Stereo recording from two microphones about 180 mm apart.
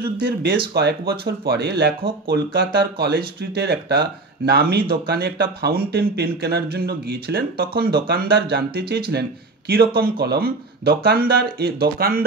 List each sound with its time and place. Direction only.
0.0 s speech: 65° right (ahead or behind)